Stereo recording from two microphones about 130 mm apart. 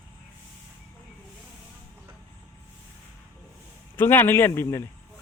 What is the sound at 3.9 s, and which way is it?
Speech, 15° left (ahead or behind).